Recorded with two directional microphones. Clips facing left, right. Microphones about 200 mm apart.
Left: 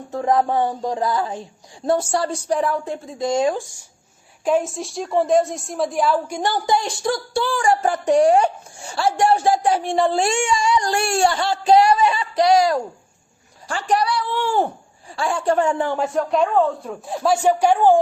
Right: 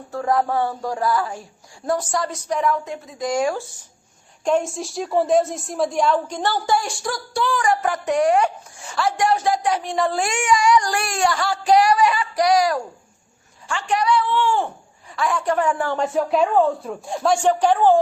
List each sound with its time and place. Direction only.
0.1 s a woman's voice: 20° left (ahead or behind)
4.4 s a woman's voice: centre (ahead or behind); by 12.8 s 25° left (ahead or behind)
13.7 s speech: 35° left (ahead or behind)
15.1 s a woman's voice: 30° left (ahead or behind)
16.0 s a man's voice: centre (ahead or behind)